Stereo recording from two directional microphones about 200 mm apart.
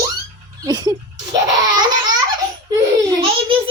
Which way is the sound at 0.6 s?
20° right (ahead or behind).